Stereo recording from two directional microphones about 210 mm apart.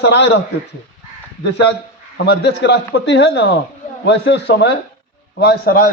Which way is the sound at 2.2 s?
55° left (ahead or behind).